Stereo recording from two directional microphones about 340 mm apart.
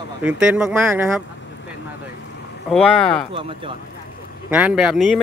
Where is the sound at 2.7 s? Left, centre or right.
Centre.